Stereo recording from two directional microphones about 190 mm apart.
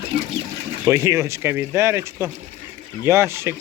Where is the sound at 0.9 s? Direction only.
15° right (ahead or behind).